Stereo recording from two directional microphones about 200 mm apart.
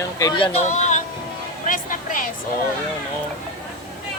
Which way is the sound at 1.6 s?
40° left (ahead or behind).